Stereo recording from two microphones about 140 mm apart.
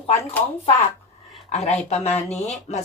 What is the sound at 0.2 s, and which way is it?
Speech, 15° left (ahead or behind).